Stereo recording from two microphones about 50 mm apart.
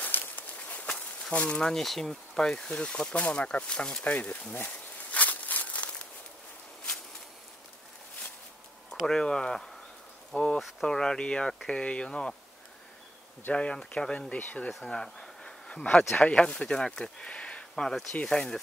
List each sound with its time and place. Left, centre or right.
0.0 s a sound: left
1.3 s speech: left
1.7 s speech: centre
4.0 s speech: left
4.6 s a sound: left
9.0 s speech: centre
10.6 s speech: centre
13.5 s speech: left
14.9 s speech: centre